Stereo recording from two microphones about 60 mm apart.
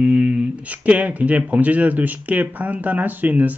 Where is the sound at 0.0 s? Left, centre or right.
Right.